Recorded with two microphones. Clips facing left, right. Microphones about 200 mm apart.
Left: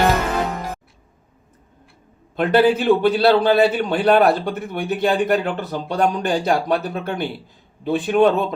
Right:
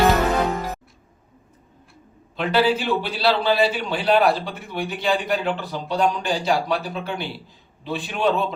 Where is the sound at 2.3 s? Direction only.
55° left (ahead or behind).